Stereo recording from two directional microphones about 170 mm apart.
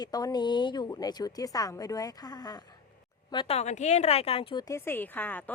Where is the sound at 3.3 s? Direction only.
35° left (ahead or behind).